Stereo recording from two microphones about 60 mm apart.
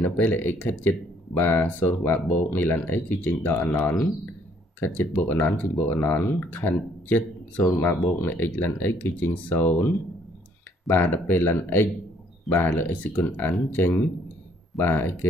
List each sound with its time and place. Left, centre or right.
0.0 s speech: left